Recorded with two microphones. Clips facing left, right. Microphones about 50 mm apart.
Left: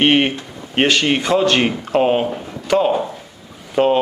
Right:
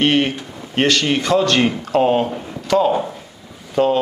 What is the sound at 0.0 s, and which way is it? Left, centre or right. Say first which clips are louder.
Speech: left 2 dB; left.